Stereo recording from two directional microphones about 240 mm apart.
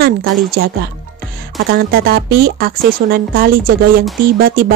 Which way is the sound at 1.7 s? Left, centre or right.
Right.